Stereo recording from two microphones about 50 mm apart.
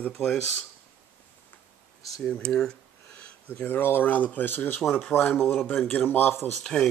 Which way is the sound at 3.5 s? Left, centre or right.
Left.